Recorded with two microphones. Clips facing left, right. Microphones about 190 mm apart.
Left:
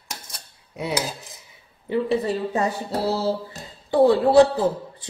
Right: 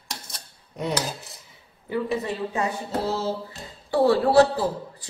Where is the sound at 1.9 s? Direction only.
30° left (ahead or behind).